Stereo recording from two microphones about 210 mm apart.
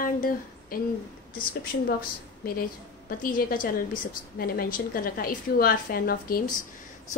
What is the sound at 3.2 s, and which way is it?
A woman's voice, 40° left (ahead or behind).